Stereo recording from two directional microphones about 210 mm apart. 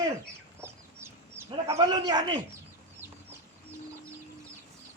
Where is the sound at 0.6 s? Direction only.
10° right (ahead or behind).